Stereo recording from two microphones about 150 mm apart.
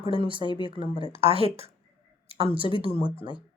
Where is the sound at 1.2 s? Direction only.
40° right (ahead or behind).